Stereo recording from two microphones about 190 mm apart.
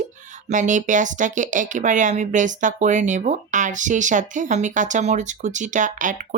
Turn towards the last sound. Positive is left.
turn(degrees=-40)  # may be behind; listen again after turning